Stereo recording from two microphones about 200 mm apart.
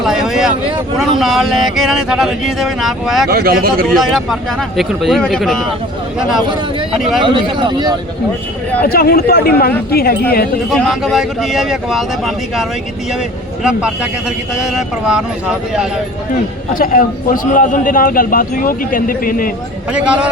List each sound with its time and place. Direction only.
0.0 s a sound: centre (ahead or behind)
0.9 s speech: centre (ahead or behind)
3.2 s speech: 50° right (ahead or behind)
3.8 s speech: centre (ahead or behind)
6.4 s speech: 25° right (ahead or behind)
6.9 s speech: centre (ahead or behind)
7.3 s speech: 25° right (ahead or behind)
8.8 s a man's voice: 50° left (ahead or behind)
10.8 s speech: centre (ahead or behind)
13.7 s speech: 5° right (ahead or behind)
16.7 s a man's voice: 45° left (ahead or behind)
19.9 s speech: 5° right (ahead or behind)